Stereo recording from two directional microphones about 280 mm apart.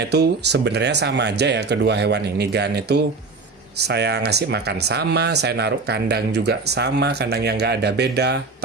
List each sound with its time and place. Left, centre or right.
0.1 s speech: right